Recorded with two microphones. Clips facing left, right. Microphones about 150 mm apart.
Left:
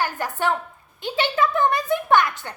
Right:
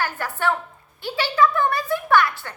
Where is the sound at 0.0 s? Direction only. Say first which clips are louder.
Even; 15° left (ahead or behind).